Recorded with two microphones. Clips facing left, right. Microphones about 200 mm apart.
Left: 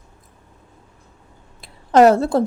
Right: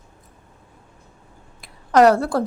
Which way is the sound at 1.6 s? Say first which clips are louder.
Left 2 dB; 25° left (ahead or behind).